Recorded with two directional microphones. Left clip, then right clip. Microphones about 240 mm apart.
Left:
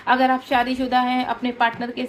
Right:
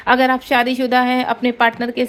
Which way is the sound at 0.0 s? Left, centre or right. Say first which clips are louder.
Right 4 dB; right.